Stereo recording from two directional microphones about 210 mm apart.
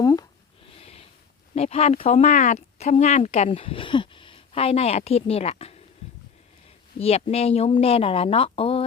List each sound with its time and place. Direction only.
0.0 s a sound: 15° left (ahead or behind)
0.7 s snort: 25° left (ahead or behind)
1.5 s speech: 30° left (ahead or behind)
7.0 s speech: 30° left (ahead or behind)